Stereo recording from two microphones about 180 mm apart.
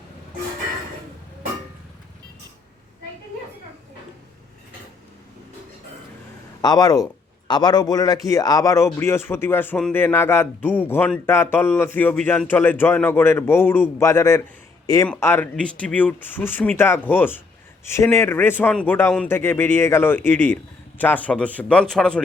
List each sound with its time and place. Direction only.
6.6 s speech: 20° left (ahead or behind); by 22.2 s 5° left (ahead or behind)